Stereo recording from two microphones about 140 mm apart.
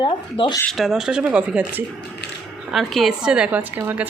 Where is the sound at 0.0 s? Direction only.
35° left (ahead or behind).